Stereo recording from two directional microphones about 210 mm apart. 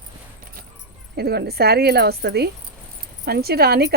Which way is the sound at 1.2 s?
50° right (ahead or behind).